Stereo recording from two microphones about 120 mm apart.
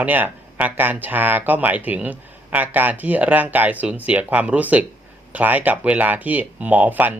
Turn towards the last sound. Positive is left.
turn(degrees=-15)  # may be behind; listen again after turning